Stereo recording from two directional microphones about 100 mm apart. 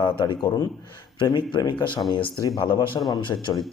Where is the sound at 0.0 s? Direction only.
55° left (ahead or behind).